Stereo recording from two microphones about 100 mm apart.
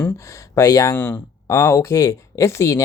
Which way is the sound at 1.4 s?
30° left (ahead or behind).